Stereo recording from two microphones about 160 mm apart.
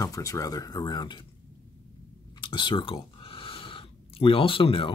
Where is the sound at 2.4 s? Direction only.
30° left (ahead or behind).